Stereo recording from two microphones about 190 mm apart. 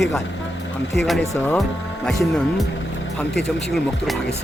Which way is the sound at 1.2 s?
15° left (ahead or behind).